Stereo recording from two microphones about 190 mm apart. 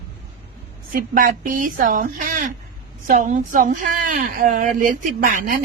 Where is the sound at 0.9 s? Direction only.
50° right (ahead or behind).